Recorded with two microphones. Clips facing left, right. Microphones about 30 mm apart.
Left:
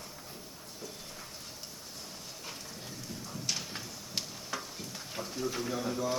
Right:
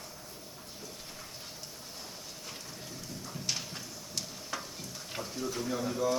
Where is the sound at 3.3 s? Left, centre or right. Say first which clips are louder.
Even; centre.